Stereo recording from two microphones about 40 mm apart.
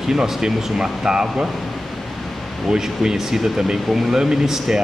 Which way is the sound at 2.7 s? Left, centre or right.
Centre.